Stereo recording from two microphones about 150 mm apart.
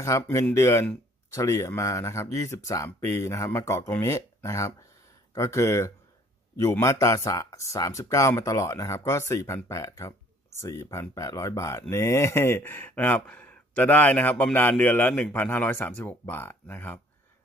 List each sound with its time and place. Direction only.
0.0 s speech: 20° left (ahead or behind)